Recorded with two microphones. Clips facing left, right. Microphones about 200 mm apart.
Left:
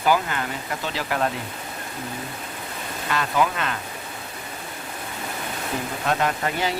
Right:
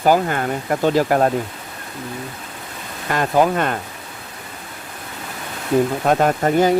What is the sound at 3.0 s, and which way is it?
Speech, 45° right (ahead or behind).